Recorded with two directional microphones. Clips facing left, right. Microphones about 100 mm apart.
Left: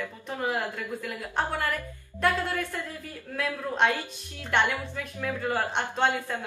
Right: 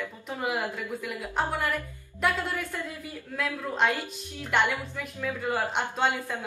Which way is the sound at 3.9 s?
15° right (ahead or behind).